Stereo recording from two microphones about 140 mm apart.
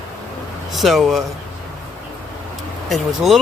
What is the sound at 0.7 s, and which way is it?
Speech, centre (ahead or behind).